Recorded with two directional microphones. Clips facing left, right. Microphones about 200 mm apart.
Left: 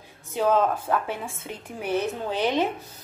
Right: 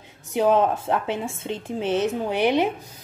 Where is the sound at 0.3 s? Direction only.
20° right (ahead or behind).